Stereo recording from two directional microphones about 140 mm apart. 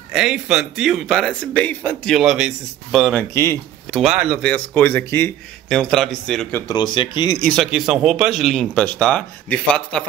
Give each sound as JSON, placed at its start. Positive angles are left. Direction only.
{"t": 0.1, "sound": "speech", "side_deg": -5}
{"t": 2.0, "sound": "speech", "side_deg": -5}
{"t": 3.2, "sound": "speech", "side_deg": 20}
{"t": 3.9, "sound": "speech", "side_deg": 0}
{"t": 6.7, "sound": "speech", "side_deg": 35}
{"t": 7.4, "sound": "speech", "side_deg": 0}